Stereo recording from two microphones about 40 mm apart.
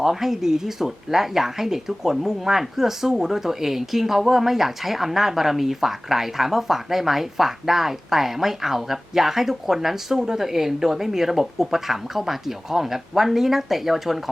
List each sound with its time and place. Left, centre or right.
0.0 s speech: centre